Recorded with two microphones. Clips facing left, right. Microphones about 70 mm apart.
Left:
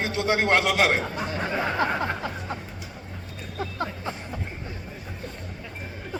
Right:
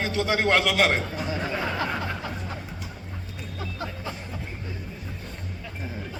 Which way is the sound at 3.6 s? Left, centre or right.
Left.